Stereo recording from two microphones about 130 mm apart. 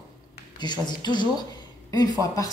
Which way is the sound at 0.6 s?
35° left (ahead or behind).